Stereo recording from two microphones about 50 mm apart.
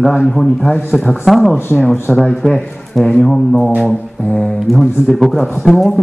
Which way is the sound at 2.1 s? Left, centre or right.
Centre.